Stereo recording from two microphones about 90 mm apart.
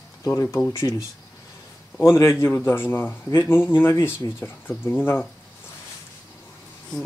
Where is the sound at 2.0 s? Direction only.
30° left (ahead or behind).